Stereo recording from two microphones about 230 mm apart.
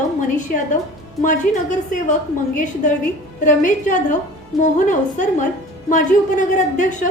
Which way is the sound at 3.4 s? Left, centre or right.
Left.